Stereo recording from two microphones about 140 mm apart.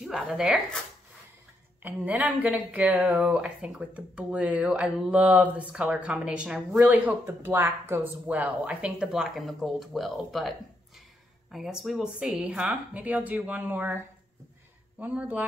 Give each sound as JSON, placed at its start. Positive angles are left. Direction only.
{"t": 0.0, "sound": "speech", "side_deg": -5}
{"t": 1.8, "sound": "speech", "side_deg": -10}
{"t": 11.5, "sound": "speech", "side_deg": 0}